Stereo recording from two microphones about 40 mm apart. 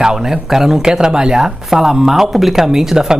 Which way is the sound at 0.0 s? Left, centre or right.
Centre.